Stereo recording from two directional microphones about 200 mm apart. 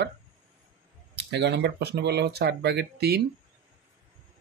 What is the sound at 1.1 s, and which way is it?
Speech, 55° right (ahead or behind).